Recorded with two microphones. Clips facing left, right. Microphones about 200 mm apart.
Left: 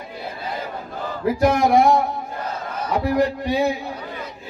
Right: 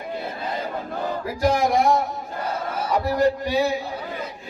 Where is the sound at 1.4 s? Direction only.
60° left (ahead or behind).